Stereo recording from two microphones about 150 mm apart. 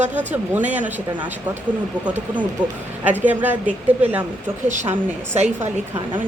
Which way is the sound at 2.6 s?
30° right (ahead or behind).